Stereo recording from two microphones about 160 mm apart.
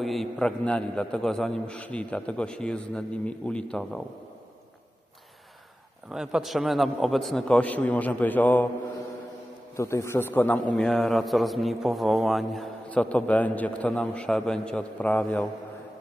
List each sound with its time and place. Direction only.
0.0 s a man's voice: centre (ahead or behind)
6.0 s a man's voice: 5° right (ahead or behind)
9.8 s a man's voice: 20° left (ahead or behind)